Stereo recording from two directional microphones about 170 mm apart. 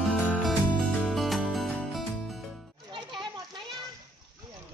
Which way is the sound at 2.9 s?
30° right (ahead or behind).